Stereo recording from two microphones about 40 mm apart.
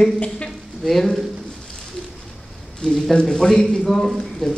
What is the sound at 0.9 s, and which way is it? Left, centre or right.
Speech, centre.